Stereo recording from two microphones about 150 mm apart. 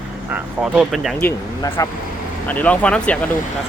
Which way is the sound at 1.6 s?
20° left (ahead or behind).